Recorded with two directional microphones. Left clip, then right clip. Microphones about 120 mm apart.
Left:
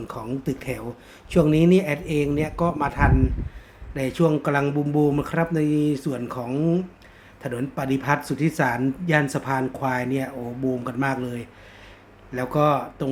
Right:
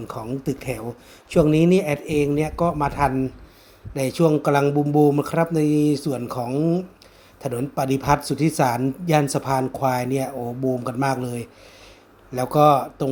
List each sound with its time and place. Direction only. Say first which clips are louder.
0.1 s speech: right 2 dB; 35° right (ahead or behind)
7.4 s speech: right 4 dB; 40° right (ahead or behind)